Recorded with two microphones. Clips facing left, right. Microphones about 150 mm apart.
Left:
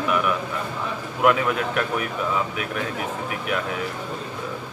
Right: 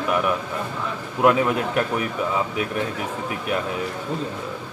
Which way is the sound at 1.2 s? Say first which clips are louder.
Right 2 dB; 30° right (ahead or behind).